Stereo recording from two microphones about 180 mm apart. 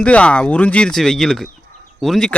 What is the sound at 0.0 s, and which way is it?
Speech, 5° left (ahead or behind).